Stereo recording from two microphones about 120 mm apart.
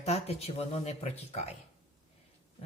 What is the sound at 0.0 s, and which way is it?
Speech, 60° left (ahead or behind).